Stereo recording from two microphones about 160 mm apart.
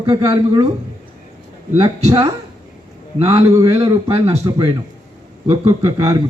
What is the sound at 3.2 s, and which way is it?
A man's voice, 35° right (ahead or behind).